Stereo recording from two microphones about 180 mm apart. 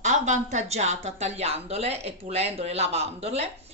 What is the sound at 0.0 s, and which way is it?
A woman's voice, 40° right (ahead or behind).